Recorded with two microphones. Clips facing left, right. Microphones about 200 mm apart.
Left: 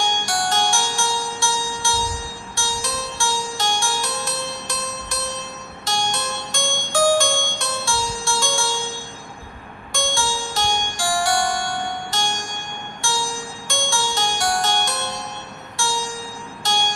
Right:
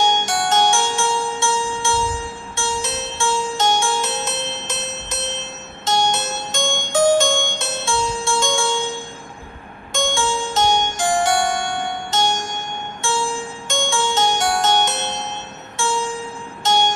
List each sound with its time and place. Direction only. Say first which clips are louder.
0.0 s music: right 4 dB; 20° right (ahead or behind)